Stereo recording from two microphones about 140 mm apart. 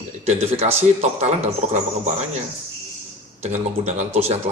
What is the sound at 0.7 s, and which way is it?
Speech, 50° right (ahead or behind).